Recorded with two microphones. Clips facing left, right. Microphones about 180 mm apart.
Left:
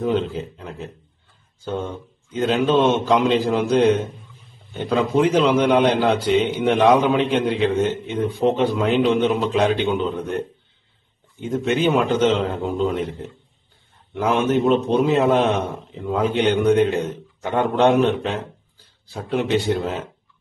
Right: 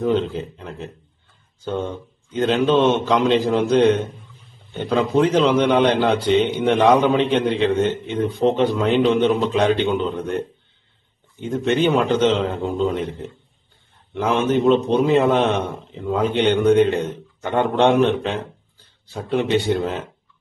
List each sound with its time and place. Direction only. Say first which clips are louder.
0.0 s a man's voice: right 1 dB; 5° left (ahead or behind)
11.4 s a man's voice: right 1 dB; 5° left (ahead or behind)